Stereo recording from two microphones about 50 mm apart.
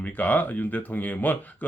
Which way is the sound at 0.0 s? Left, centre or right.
Left.